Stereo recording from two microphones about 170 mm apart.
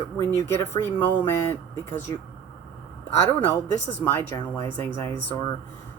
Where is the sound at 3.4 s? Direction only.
15° left (ahead or behind).